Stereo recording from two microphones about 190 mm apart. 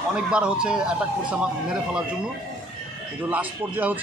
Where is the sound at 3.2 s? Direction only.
10° right (ahead or behind).